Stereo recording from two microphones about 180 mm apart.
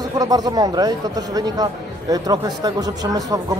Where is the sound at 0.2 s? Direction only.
20° right (ahead or behind).